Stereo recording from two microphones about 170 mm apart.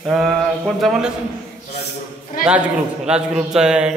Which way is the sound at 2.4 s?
55° left (ahead or behind).